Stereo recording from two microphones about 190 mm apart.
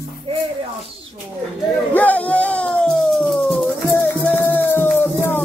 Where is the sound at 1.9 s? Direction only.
10° left (ahead or behind).